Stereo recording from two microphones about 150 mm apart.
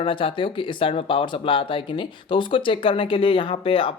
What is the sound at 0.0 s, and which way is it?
Speech, 35° left (ahead or behind).